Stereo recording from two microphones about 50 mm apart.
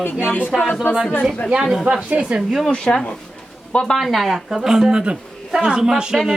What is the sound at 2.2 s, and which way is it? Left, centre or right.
Speech, centre.